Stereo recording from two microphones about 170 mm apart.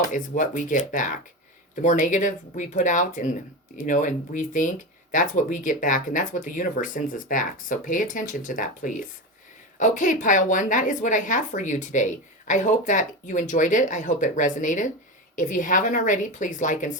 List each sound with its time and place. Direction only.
0.1 s speech: 50° left (ahead or behind)